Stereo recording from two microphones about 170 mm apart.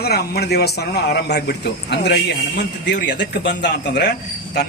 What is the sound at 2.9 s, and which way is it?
Speech, 90° left.